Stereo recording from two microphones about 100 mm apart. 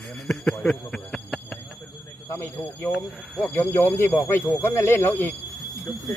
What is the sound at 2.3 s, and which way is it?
Speech, 25° left (ahead or behind).